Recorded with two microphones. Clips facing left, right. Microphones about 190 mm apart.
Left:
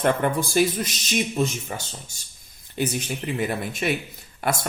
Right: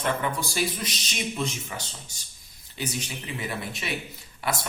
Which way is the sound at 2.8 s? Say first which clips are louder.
Left 7 dB; 50° left (ahead or behind).